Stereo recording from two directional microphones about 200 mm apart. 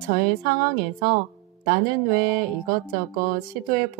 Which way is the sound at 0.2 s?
45° right (ahead or behind).